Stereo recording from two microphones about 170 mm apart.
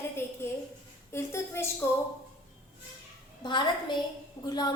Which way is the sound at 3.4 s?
25° left (ahead or behind).